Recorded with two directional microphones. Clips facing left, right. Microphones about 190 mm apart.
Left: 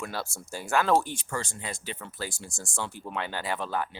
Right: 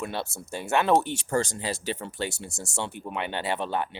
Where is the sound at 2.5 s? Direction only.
65° right (ahead or behind).